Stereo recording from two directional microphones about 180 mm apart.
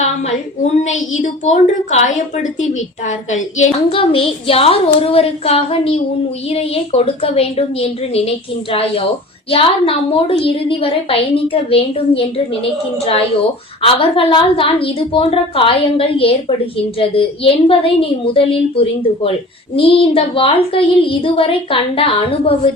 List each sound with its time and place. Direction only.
0.6 s a woman's voice: 40° left (ahead or behind)
3.1 s a woman's voice: 40° left (ahead or behind)
3.8 s a woman's voice: 30° left (ahead or behind)
13.8 s a woman's voice: 30° left (ahead or behind)
19.7 s a woman's voice: 30° left (ahead or behind)